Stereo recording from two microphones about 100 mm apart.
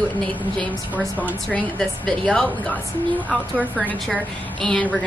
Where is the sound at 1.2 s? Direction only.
10° left (ahead or behind).